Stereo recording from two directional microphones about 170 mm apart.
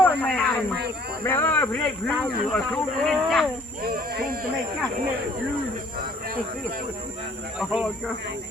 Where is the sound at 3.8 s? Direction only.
60° right (ahead or behind).